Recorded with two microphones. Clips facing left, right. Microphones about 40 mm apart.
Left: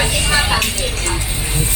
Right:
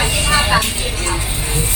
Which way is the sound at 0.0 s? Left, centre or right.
Centre.